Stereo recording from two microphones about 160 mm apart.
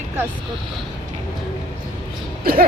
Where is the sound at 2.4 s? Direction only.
65° right (ahead or behind).